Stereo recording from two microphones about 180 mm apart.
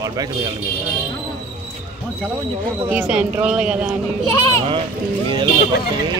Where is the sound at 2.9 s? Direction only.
5° right (ahead or behind).